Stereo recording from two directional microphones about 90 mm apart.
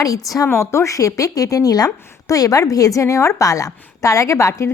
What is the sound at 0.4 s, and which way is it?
A woman's voice, 30° left (ahead or behind).